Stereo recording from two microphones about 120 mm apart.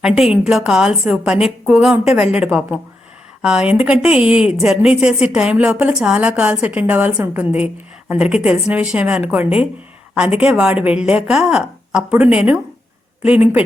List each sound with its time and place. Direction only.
0.0 s a woman's voice: 5° right (ahead or behind)